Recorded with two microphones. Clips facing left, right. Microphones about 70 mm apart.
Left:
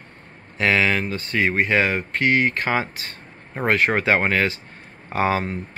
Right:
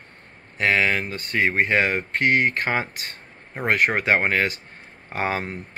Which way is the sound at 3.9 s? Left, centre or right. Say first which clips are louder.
Left 1 dB; centre.